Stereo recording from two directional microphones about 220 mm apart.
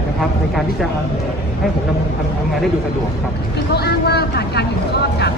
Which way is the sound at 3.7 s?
45° left (ahead or behind).